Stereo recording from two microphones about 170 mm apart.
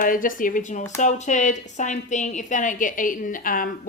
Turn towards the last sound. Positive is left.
turn(degrees=55)  # may be behind; listen again after turning